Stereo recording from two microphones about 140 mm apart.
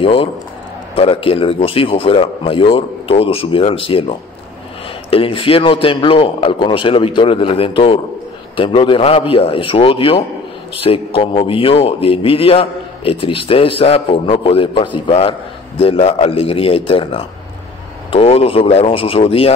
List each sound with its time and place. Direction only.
0.0 s a man's voice: 40° left (ahead or behind)